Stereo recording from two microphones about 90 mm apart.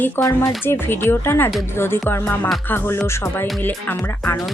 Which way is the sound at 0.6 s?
25° left (ahead or behind).